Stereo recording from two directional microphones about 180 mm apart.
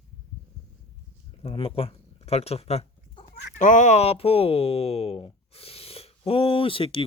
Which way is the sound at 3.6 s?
45° left (ahead or behind).